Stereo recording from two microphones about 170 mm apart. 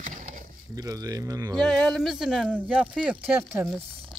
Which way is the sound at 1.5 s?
5° left (ahead or behind).